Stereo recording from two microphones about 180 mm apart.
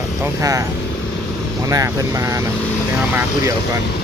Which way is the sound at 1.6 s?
15° right (ahead or behind).